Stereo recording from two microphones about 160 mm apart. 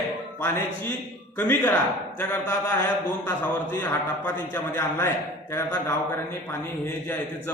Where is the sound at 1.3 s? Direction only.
10° left (ahead or behind).